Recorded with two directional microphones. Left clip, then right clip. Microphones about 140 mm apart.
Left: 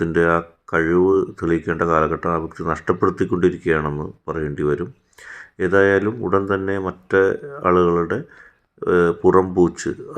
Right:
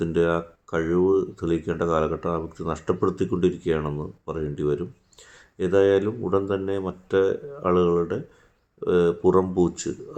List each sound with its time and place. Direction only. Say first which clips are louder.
0.0 s speech: left 5 dB; 15° left (ahead or behind)